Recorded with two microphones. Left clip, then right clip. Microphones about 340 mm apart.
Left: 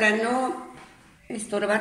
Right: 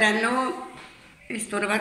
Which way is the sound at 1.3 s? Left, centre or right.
Left.